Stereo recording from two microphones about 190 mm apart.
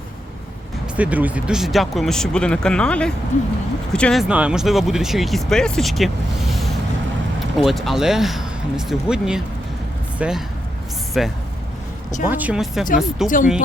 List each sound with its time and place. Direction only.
0.9 s speech: 10° right (ahead or behind)
7.5 s speech: centre (ahead or behind)
13.2 s speech: 45° left (ahead or behind)